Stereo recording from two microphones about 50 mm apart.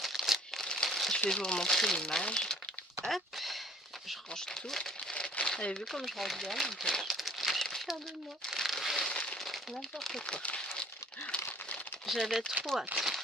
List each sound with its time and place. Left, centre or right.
0.0 s crumpling: centre
0.6 s crumpling: centre
0.9 s crumpling: centre
1.3 s speech: centre
3.0 s a sound: centre
4.4 s speech: centre
5.2 s crumpling: left
5.9 s speech: centre
8.5 s crumpling: centre
9.0 s a sound: centre
10.0 s speech: centre
10.3 s speech: left
12.0 s speech: centre
12.9 s speech: right